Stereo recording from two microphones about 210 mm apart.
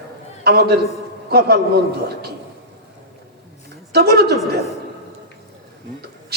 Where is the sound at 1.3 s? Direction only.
50° right (ahead or behind).